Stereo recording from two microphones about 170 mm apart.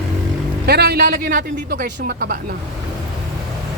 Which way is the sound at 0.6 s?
70° right (ahead or behind).